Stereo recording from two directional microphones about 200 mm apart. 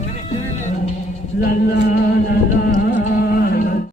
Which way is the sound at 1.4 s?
50° left (ahead or behind).